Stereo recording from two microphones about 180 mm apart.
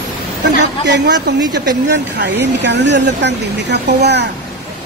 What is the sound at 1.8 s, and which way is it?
Speech, 75° right (ahead or behind).